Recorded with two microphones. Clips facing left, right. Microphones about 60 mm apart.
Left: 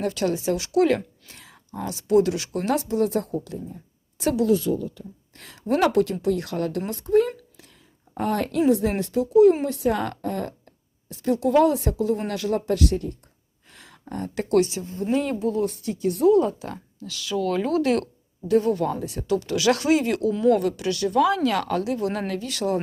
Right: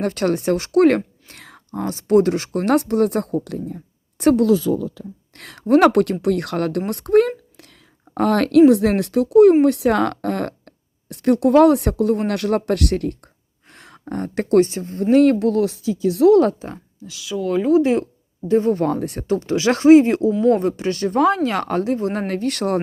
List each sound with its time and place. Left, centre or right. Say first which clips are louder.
0.0 s a woman's voice: right 4 dB; right
4.2 s a woman's voice: right 8 dB; right
4.7 s speech: right 4 dB; right
5.4 s speech: right 5 dB; right
5.6 s a woman's voice: right 7 dB; right
13.7 s a sound: right 4 dB; right
14.1 s a woman's voice: right 5 dB; right
15.1 s speech: right 10 dB; right
16.7 s speech: left 1 dB; centre
18.4 s speech: right 3 dB; right
18.9 s a woman's voice: right 6 dB; right
19.3 s speech: right 2 dB; right
22.3 s a woman's voice: right 5 dB; right